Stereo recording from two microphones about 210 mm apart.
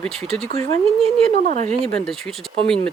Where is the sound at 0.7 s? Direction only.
35° right (ahead or behind).